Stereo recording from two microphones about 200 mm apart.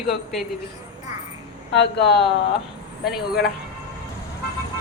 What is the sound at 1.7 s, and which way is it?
Speech, 60° left (ahead or behind).